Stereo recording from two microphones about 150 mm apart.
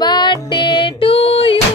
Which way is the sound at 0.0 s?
30° left (ahead or behind).